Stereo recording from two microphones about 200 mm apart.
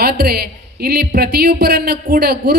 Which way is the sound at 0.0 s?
50° right (ahead or behind).